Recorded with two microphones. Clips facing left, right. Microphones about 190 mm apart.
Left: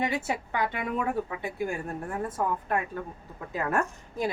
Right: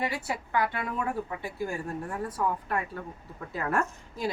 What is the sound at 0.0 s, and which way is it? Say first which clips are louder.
A woman's voice: left 3 dB; 20° left (ahead or behind).